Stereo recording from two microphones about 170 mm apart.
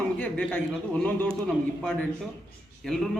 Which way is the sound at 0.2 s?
10° left (ahead or behind).